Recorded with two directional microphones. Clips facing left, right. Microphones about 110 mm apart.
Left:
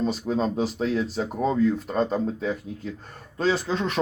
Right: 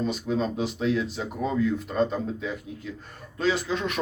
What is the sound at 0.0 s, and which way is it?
Speech, 35° left (ahead or behind).